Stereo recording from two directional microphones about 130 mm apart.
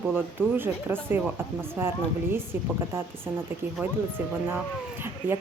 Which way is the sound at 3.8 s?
15° right (ahead or behind).